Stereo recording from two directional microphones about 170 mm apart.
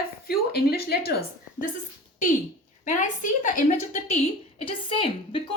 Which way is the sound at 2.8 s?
50° left (ahead or behind).